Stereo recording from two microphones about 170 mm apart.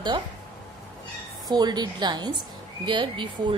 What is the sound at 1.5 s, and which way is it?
Speech, 25° right (ahead or behind).